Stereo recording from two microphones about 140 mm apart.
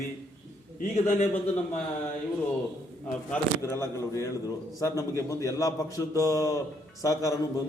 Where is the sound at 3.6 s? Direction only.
20° left (ahead or behind).